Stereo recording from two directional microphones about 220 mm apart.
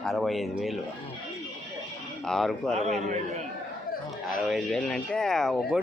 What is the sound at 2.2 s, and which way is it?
Speech, centre (ahead or behind).